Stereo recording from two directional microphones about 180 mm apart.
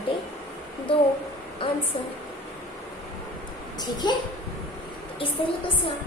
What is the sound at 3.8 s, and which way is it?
Speech, 25° left (ahead or behind).